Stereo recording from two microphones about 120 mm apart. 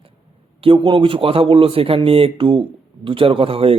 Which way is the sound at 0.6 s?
45° right (ahead or behind).